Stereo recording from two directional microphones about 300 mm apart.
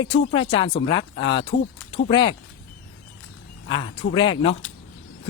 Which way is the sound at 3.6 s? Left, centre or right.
Centre.